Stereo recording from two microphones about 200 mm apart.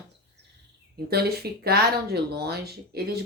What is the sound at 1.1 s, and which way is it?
Speech, 50° right (ahead or behind).